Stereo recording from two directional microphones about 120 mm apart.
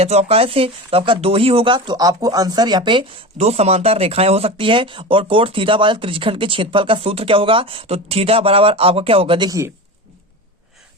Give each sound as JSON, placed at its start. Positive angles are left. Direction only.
{"t": 0.0, "sound": "speech", "side_deg": -60}
{"t": 3.3, "sound": "speech", "side_deg": -60}
{"t": 9.5, "sound": "speech", "side_deg": -25}